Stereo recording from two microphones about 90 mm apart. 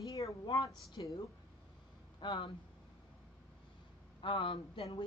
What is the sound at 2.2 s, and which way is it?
Speech, 70° left (ahead or behind).